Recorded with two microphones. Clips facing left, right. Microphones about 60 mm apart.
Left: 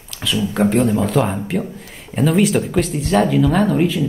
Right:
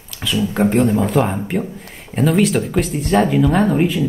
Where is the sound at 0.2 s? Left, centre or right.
Centre.